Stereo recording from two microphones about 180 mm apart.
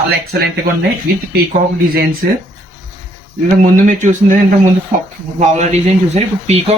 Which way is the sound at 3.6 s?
45° right (ahead or behind).